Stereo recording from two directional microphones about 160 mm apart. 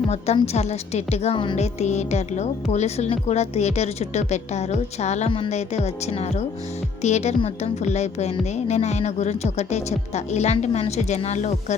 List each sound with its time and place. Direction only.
0.4 s a woman's voice: 40° left (ahead or behind)
1.6 s speech: 45° left (ahead or behind)